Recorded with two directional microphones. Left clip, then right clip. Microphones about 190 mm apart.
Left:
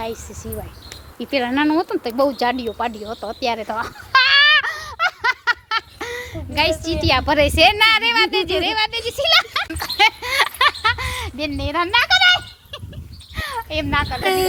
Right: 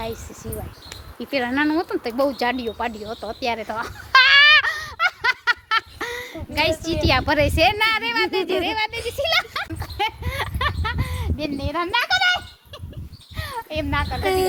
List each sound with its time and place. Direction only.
1.2 s speech: 10° left (ahead or behind)
4.1 s wail: 15° right (ahead or behind)
9.0 s speech: 10° right (ahead or behind)
9.7 s a sound: 15° left (ahead or behind)
13.3 s a sound: 10° left (ahead or behind)
14.2 s speech: 10° right (ahead or behind)